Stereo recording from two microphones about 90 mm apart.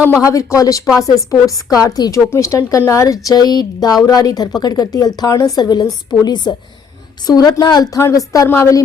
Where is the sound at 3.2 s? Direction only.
50° left (ahead or behind).